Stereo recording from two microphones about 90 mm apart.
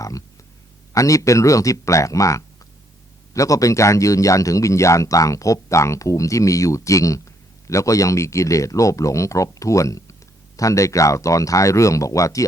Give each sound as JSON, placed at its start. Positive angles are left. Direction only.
{"t": 0.9, "sound": "speech", "side_deg": 35}